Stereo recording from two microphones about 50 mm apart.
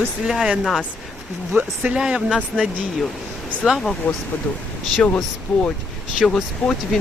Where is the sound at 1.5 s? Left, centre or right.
Right.